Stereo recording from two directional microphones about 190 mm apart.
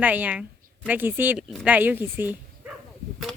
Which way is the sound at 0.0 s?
10° right (ahead or behind).